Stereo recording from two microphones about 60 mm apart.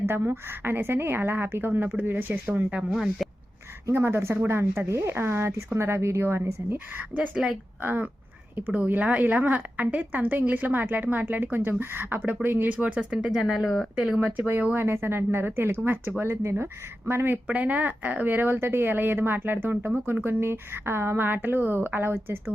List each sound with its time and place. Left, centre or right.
0.0 s speech: right
2.9 s speech: centre
3.9 s a woman's voice: right
12.7 s speech: right; by 14.1 s centre
14.3 s speech: right
17.1 s speech: right
17.4 s speech: right